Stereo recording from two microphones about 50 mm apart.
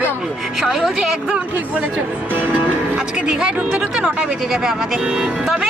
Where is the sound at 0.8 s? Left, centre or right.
Centre.